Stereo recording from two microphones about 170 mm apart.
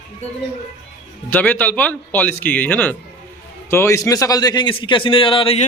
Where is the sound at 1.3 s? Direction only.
10° left (ahead or behind).